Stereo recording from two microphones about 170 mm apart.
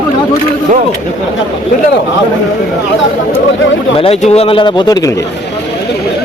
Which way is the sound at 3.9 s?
35° left (ahead or behind).